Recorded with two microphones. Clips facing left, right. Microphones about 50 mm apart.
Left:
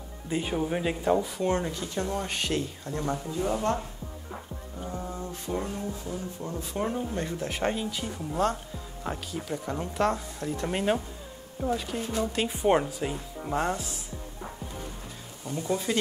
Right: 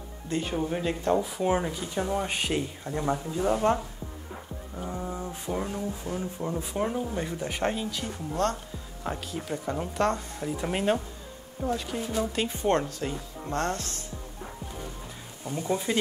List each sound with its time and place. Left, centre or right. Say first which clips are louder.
0.3 s speech: even; centre
1.1 s speech: right 2 dB; centre
3.3 s speech: right 2 dB; right
4.7 s mantra: right 2 dB; centre
6.0 s speech: right 2 dB; right
6.5 s speech: even; centre
15.4 s speech: even; centre